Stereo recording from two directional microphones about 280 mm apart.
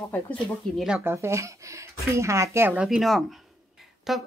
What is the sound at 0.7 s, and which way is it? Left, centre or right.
A woman's voice, centre.